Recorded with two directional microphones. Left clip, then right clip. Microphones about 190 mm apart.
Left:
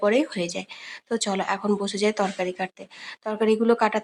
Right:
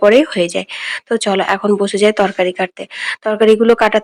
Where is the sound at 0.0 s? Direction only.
30° right (ahead or behind).